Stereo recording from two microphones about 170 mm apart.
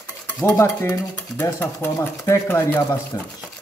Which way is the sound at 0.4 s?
5° left (ahead or behind).